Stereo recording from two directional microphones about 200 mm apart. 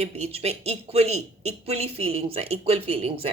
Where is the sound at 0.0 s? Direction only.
30° right (ahead or behind).